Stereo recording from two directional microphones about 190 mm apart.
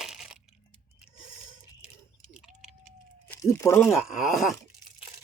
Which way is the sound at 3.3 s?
15° left (ahead or behind).